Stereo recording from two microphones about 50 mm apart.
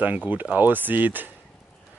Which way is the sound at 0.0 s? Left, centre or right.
Right.